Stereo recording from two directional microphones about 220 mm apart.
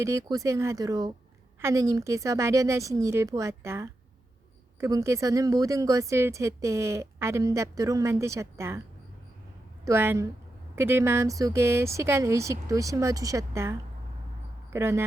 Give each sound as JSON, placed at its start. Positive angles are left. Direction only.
{"t": 0.0, "sound": "a woman's voice", "side_deg": -15}
{"t": 9.8, "sound": "a woman's voice", "side_deg": -10}